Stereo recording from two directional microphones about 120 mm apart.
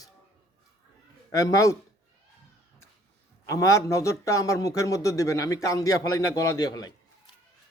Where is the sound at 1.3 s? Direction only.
30° left (ahead or behind).